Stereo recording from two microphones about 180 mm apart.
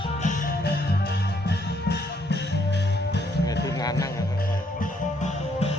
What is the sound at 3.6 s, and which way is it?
Music, 20° left (ahead or behind).